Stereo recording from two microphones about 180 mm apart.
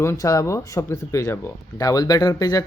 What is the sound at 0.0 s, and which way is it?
Speech, 15° left (ahead or behind).